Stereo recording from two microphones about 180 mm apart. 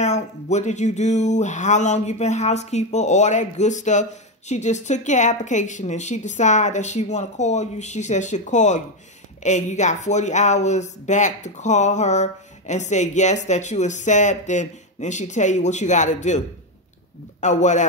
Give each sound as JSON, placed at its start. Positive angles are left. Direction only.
{"t": 0.0, "sound": "speech", "side_deg": 40}